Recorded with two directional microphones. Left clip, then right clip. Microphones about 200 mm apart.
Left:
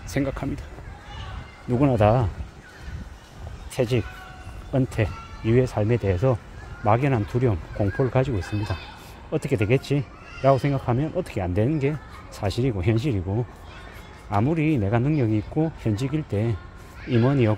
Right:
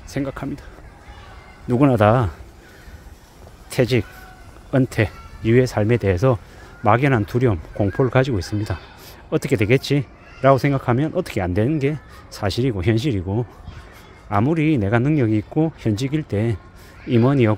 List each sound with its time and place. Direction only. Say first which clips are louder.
0.1 s speech: even; 15° right (ahead or behind)
1.7 s speech: right 4 dB; 30° right (ahead or behind)
3.7 s speech: right 5 dB; 35° right (ahead or behind)